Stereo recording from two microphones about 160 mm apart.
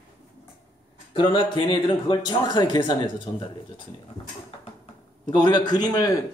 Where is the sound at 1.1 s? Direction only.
30° left (ahead or behind).